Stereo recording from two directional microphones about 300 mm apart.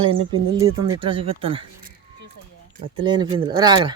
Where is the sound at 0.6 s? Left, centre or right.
Centre.